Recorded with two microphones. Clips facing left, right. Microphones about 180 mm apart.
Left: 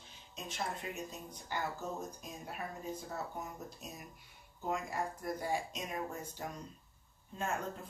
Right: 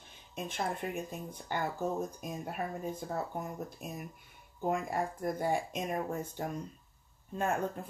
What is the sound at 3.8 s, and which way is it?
Speech, 55° right (ahead or behind).